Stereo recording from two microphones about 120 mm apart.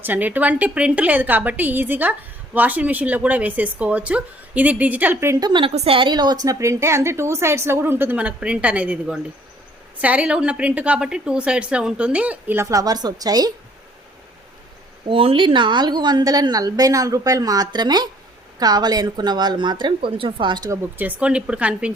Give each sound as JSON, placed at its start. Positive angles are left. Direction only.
{"t": 0.0, "sound": "a woman's voice", "side_deg": -15}
{"t": 5.4, "sound": "a woman's voice", "side_deg": -40}
{"t": 5.7, "sound": "a woman's voice", "side_deg": -55}
{"t": 12.6, "sound": "a woman's voice", "side_deg": -30}
{"t": 15.0, "sound": "a woman's voice", "side_deg": -50}
{"t": 21.0, "sound": "a woman's voice", "side_deg": -10}